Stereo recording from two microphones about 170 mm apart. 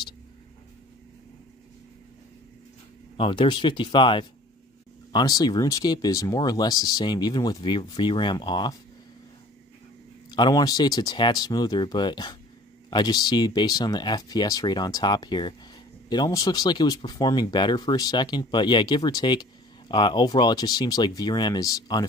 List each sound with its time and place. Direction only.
3.2 s speech: 30° left (ahead or behind)
10.3 s speech: 25° left (ahead or behind)